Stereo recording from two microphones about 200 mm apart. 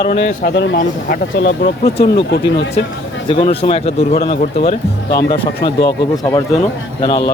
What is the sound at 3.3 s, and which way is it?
Speech, 25° left (ahead or behind).